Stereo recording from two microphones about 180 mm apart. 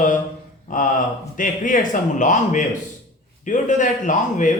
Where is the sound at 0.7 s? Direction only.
50° left (ahead or behind).